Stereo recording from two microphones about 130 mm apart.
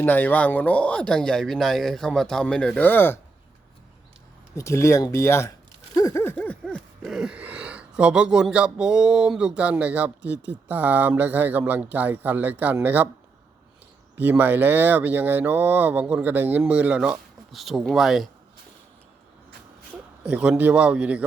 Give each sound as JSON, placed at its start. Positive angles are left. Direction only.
{"t": 0.0, "sound": "speech", "side_deg": 15}
{"t": 4.5, "sound": "speech", "side_deg": 20}
{"t": 5.9, "sound": "a sound", "side_deg": 25}
{"t": 7.0, "sound": "speech", "side_deg": -5}
{"t": 14.2, "sound": "speech", "side_deg": -15}
{"t": 20.2, "sound": "speech", "side_deg": -5}